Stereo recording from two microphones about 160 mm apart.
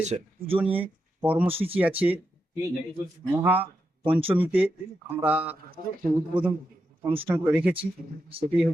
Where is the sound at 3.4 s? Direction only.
10° right (ahead or behind).